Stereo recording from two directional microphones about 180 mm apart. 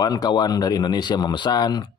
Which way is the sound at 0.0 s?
20° left (ahead or behind).